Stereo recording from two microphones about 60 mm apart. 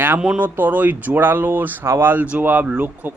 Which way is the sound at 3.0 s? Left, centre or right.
Right.